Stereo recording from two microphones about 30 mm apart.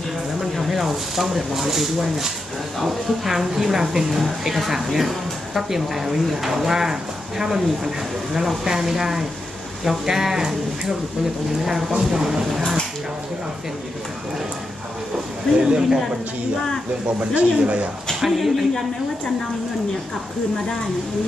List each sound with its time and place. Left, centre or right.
0.6 s speech: centre
15.5 s a man's voice: right
17.2 s speech: right
18.2 s speech: centre